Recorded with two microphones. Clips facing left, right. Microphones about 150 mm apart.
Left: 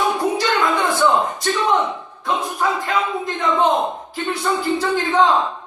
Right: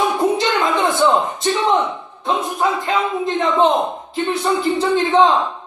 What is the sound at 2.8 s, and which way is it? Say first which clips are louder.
A man's voice: right 2 dB; 25° right (ahead or behind).